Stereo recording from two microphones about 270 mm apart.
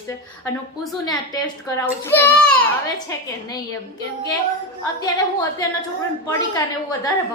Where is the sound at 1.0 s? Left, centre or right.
Centre.